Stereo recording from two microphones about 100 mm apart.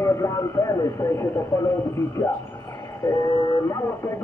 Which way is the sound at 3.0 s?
50° left (ahead or behind).